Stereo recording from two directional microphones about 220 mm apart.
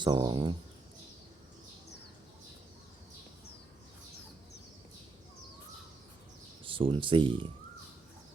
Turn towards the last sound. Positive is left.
turn(degrees=-25)  # may be behind; listen again after turning